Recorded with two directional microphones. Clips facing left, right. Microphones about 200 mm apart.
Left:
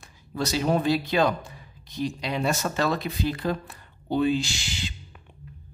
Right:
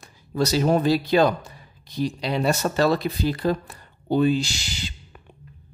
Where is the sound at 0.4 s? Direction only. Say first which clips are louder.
Right 4 dB; 40° right (ahead or behind).